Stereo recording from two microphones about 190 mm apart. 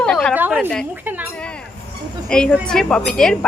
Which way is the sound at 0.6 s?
5° left (ahead or behind).